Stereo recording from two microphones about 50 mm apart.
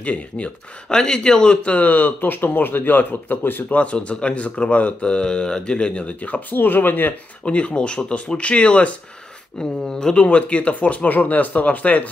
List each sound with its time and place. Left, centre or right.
0.0 s speech: left
0.8 s speech: centre
1.6 s speech: left
3.7 s speech: left
6.5 s speech: left
7.4 s speech: left
9.6 s speech: centre
10.2 s speech: left